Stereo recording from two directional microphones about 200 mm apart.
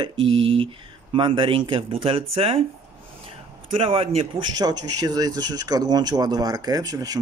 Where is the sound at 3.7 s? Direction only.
30° right (ahead or behind).